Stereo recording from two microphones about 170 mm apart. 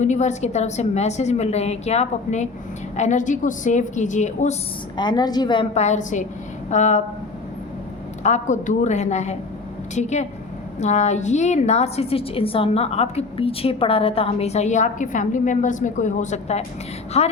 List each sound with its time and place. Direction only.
0.0 s a woman's voice: 45° left (ahead or behind)
4.9 s a woman's voice: 25° left (ahead or behind)
5.7 s a woman's voice: 40° left (ahead or behind)
8.2 s a woman's voice: 45° left (ahead or behind)